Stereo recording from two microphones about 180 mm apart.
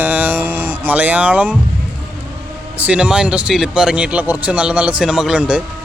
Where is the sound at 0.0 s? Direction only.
10° right (ahead or behind).